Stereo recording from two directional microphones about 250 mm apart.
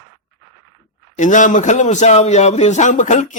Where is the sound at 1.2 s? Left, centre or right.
Left.